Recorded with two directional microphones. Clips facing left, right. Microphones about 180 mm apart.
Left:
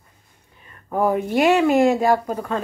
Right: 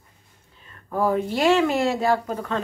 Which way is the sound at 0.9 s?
15° left (ahead or behind).